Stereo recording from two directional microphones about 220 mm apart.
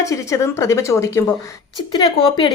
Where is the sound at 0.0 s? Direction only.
15° left (ahead or behind).